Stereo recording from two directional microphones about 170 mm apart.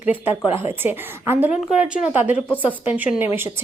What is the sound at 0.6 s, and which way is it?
A woman's voice, 10° right (ahead or behind).